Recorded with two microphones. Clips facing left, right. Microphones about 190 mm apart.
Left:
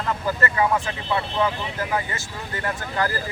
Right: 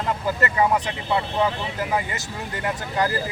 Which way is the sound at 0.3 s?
15° right (ahead or behind).